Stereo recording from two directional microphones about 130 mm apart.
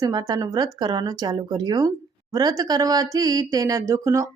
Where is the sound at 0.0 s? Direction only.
30° right (ahead or behind).